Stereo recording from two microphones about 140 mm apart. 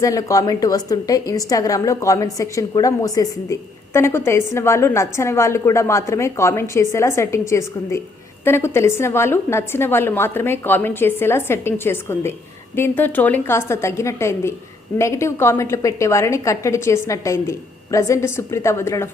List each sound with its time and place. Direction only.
0.0 s a woman's voice: 25° left (ahead or behind)